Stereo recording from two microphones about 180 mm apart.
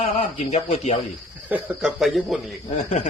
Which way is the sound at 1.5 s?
5° right (ahead or behind).